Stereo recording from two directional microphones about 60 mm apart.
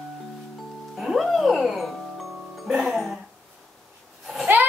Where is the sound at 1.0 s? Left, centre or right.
Centre.